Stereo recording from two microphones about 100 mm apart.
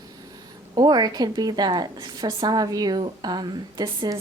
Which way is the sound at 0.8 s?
45° right (ahead or behind).